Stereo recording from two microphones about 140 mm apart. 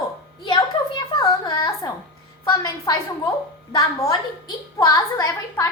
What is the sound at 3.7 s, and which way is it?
A woman's voice, 25° left (ahead or behind).